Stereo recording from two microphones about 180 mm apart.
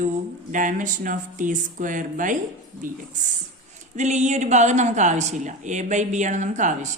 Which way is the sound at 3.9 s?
40° right (ahead or behind).